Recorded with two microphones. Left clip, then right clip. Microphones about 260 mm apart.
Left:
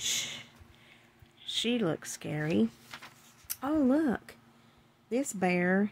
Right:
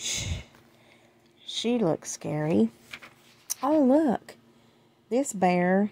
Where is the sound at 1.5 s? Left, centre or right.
Centre.